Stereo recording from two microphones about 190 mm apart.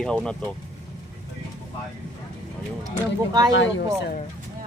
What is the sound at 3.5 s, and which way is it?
Speech, 75° left (ahead or behind).